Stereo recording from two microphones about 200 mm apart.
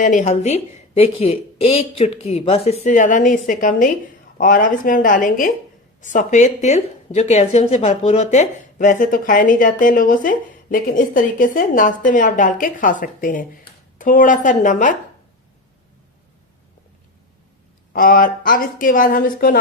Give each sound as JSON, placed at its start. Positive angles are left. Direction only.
{"t": 0.0, "sound": "a woman's voice", "side_deg": 40}
{"t": 17.9, "sound": "speech", "side_deg": 45}